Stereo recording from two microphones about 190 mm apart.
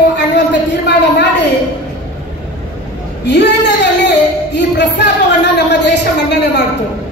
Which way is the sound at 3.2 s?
65° left (ahead or behind).